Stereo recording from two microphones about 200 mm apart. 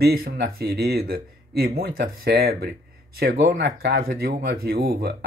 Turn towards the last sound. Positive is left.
turn(degrees=-50)  # may be behind; listen again after turning